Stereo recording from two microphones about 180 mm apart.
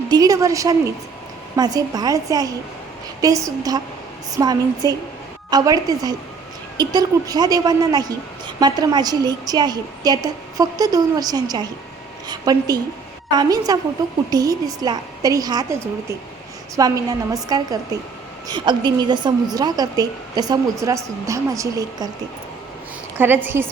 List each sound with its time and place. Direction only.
0.1 s a woman's voice: 20° right (ahead or behind)
16.7 s a woman's voice: 20° right (ahead or behind)
23.1 s a woman's voice: 10° right (ahead or behind)